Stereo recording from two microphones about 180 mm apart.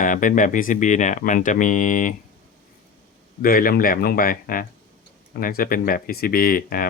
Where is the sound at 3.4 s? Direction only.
55° left (ahead or behind).